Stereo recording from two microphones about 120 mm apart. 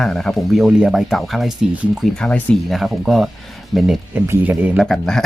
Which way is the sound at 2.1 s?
5° left (ahead or behind).